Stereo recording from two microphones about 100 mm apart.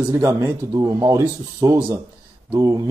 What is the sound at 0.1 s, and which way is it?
Speech, 30° right (ahead or behind).